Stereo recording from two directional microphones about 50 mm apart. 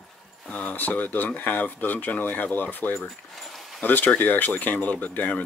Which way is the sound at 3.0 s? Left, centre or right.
Centre.